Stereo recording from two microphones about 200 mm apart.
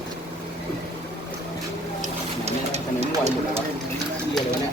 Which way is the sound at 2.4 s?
35° right (ahead or behind).